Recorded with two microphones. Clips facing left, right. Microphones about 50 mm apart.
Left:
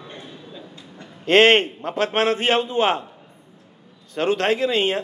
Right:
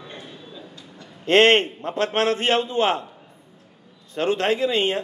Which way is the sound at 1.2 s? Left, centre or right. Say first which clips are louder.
Left 1 dB; left.